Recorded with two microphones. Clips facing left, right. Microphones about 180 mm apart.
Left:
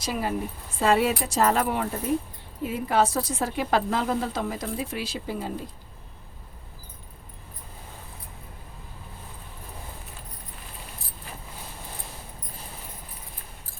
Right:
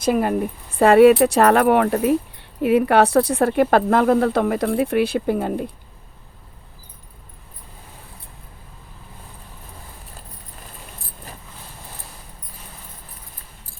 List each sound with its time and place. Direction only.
0.0 s speech: 55° right (ahead or behind)